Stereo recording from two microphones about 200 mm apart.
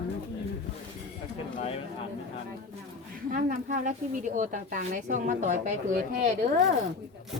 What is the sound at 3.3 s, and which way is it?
Speech, 40° right (ahead or behind).